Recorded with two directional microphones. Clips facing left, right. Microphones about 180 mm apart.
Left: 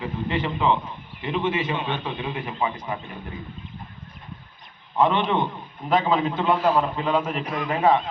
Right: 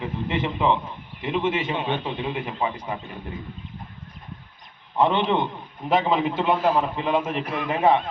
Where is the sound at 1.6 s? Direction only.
25° right (ahead or behind).